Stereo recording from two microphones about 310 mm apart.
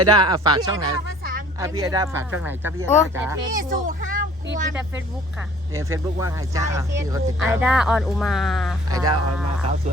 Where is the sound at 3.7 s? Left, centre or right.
Right.